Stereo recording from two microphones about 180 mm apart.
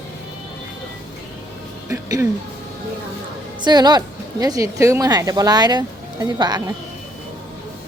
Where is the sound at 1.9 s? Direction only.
20° right (ahead or behind).